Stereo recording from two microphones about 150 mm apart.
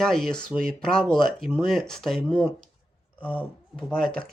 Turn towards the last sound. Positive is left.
turn(degrees=0)  # may be behind; listen again after turning